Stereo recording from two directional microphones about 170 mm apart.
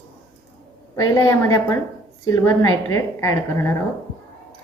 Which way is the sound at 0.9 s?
15° left (ahead or behind).